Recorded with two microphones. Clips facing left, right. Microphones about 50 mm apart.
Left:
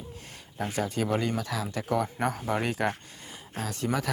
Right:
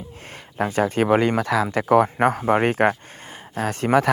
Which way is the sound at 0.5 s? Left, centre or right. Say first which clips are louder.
Right 9 dB; right.